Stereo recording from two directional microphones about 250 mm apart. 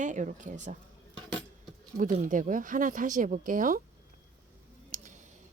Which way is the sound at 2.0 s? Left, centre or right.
Right.